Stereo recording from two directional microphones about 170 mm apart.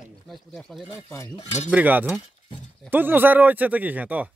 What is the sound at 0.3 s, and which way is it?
Speech, centre (ahead or behind).